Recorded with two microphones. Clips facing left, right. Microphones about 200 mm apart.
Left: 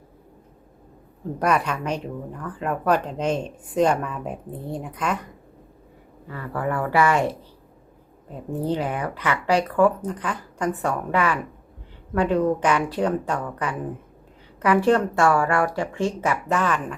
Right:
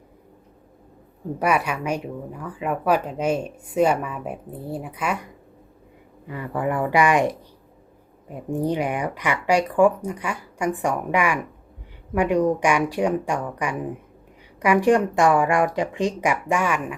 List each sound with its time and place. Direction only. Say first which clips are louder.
1.4 s speech: even; 10° right (ahead or behind)